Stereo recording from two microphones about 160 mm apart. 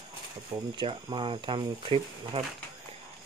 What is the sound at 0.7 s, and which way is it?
Speech, 30° right (ahead or behind).